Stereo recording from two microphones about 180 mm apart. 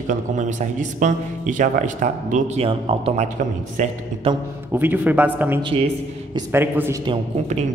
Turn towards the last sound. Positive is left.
turn(degrees=-15)  # may be behind; listen again after turning